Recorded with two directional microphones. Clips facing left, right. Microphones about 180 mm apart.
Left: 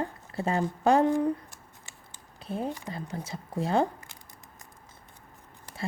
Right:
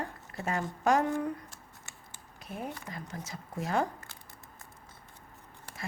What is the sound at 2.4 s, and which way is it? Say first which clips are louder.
A woman's voice: left 7 dB; 30° left (ahead or behind).